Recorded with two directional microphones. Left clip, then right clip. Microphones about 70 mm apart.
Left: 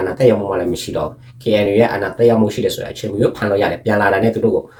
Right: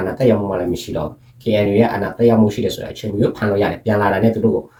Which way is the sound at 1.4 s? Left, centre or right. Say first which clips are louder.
Left 2 dB; left.